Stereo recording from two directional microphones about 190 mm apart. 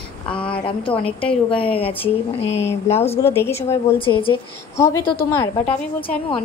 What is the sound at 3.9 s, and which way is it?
Speech, 30° left (ahead or behind).